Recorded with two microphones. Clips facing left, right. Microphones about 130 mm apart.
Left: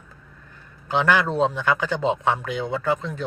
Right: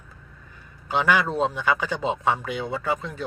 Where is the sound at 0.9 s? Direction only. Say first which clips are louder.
Left 1 dB; 5° right (ahead or behind).